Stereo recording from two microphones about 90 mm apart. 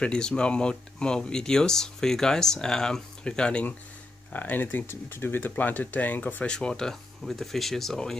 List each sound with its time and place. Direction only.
0.0 s speech: 10° left (ahead or behind)
6.5 s speech: 10° left (ahead or behind)